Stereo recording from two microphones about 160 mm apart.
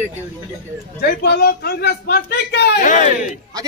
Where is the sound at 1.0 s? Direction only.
85° left.